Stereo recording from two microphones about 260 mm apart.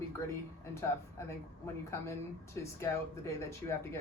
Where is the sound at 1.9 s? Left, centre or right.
Centre.